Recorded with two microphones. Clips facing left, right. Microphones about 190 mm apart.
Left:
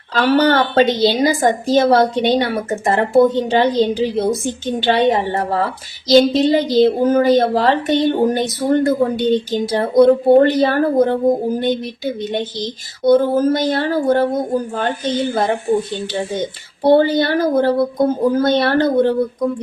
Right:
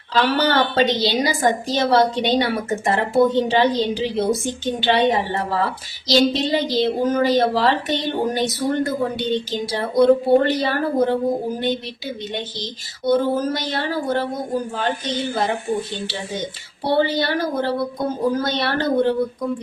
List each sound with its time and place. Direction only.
0.1 s speech: 50° left (ahead or behind)